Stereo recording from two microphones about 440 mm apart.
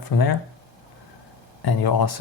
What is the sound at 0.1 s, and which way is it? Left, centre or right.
Speech, left.